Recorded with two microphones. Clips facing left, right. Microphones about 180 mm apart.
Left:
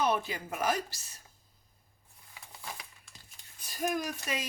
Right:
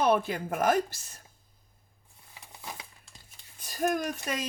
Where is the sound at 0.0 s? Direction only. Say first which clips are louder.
Right 5 dB; 55° right (ahead or behind).